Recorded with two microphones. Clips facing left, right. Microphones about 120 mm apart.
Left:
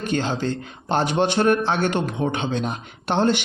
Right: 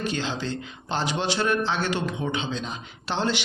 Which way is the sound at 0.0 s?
50° left (ahead or behind).